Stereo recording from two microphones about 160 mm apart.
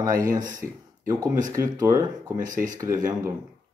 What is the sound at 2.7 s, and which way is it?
Speech, 20° right (ahead or behind).